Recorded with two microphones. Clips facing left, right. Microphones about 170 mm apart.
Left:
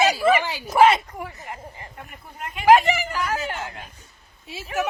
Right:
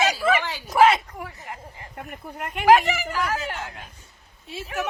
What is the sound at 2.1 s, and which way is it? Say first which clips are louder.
Speech: right 5 dB; 60° right (ahead or behind).